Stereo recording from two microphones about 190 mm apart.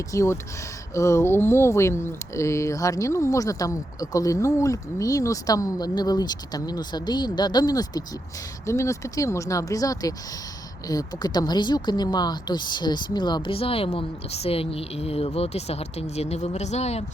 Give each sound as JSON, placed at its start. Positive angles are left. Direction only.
{"t": 0.1, "sound": "speech", "side_deg": 15}